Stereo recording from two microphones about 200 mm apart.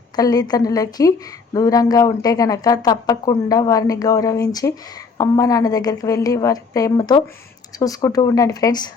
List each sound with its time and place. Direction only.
0.2 s a woman's voice: 20° left (ahead or behind)